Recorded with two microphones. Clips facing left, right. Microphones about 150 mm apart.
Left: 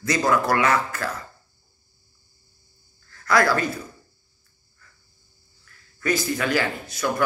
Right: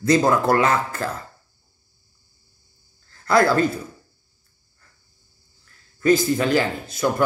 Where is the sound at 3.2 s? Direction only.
30° right (ahead or behind).